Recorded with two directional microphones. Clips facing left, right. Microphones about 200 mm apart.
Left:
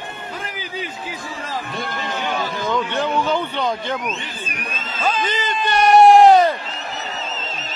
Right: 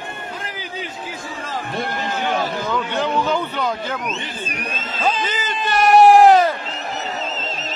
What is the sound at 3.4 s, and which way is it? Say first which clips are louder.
Speech: left 1 dB; 5° right (ahead or behind).